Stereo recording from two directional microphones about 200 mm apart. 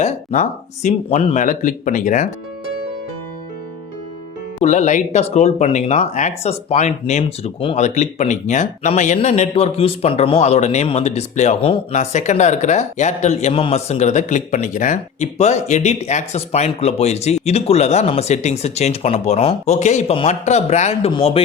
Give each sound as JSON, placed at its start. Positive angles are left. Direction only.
{"t": 0.0, "sound": "speech", "side_deg": 35}
{"t": 4.6, "sound": "speech", "side_deg": 35}